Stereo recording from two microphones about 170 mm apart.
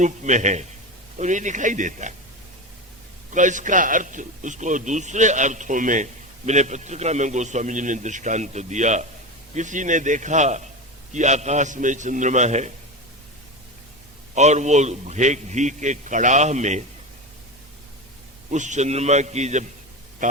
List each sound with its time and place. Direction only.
0.0 s a man's voice: 45° right (ahead or behind)
3.3 s a man's voice: 45° right (ahead or behind)
14.3 s a man's voice: 40° right (ahead or behind)
18.5 s a man's voice: 45° right (ahead or behind)